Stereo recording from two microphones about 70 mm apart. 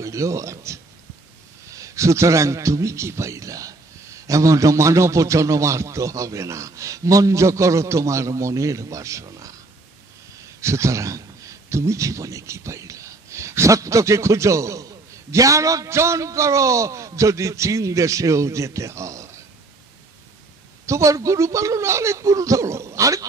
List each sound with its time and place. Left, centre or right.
0.0 s a man's voice: right
10.6 s a man's voice: right
20.8 s a man's voice: right